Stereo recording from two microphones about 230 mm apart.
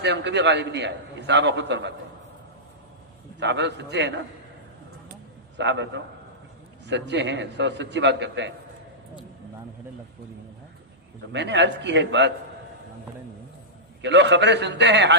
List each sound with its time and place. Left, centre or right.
0.0 s a man's voice: right
3.4 s a man's voice: right
5.5 s a man's voice: right
11.3 s a man's voice: right
14.0 s a man's voice: right